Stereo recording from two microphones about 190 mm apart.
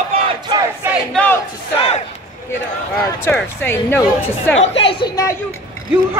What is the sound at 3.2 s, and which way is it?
Speech, 10° left (ahead or behind).